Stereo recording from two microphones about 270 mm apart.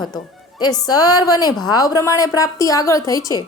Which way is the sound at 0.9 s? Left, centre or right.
Centre.